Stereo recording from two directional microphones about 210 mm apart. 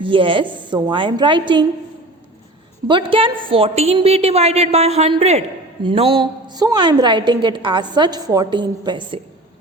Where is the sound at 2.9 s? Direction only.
25° right (ahead or behind).